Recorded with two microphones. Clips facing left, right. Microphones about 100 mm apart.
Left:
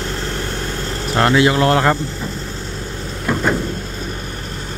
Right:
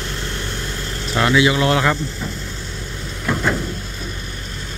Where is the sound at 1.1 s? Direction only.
45° left (ahead or behind).